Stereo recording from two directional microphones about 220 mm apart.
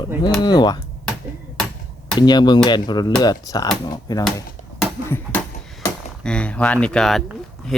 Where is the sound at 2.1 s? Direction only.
20° left (ahead or behind).